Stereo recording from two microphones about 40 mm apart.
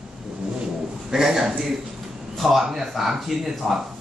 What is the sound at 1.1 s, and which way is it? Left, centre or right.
A man's voice, centre.